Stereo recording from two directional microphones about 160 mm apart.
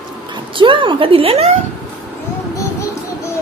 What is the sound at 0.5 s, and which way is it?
A woman's voice, 30° right (ahead or behind).